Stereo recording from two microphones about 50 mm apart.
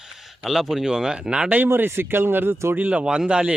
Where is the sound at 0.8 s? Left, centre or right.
Centre.